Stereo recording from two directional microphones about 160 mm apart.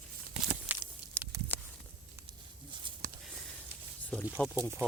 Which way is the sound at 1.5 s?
10° left (ahead or behind).